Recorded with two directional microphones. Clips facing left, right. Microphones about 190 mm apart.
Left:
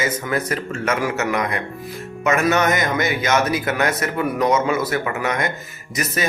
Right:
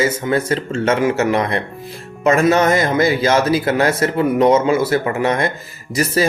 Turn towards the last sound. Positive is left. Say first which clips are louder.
# right 7 dB
turn(degrees=-30)  # may be behind; listen again after turning